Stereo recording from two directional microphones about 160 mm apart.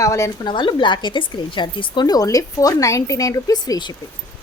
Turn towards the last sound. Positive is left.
turn(degrees=25)  # may be behind; listen again after turning